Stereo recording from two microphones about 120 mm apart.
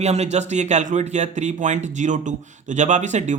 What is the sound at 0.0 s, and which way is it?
A man's voice, 70° right (ahead or behind).